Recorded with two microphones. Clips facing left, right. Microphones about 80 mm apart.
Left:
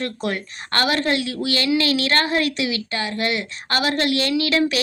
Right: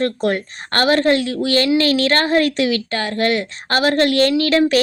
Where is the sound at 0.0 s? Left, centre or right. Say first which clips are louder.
Right 7 dB; right.